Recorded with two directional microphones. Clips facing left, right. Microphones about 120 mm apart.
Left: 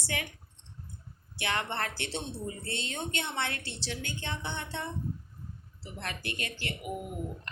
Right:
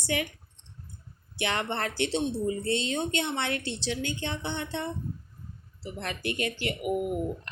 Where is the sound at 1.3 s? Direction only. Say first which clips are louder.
Right 3 dB; 20° right (ahead or behind).